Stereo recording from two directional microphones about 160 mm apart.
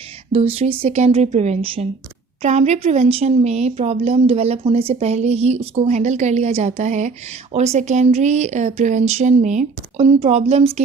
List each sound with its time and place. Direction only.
0.3 s speech: 40° right (ahead or behind)